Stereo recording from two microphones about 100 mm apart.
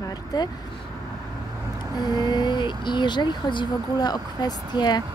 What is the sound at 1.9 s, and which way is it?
Speech, 45° left (ahead or behind).